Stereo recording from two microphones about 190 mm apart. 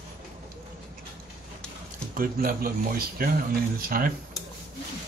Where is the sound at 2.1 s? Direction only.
50° right (ahead or behind).